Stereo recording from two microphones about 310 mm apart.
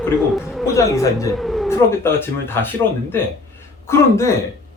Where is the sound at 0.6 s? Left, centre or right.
Centre.